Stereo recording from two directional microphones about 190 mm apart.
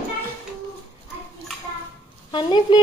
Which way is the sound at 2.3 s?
25° left (ahead or behind).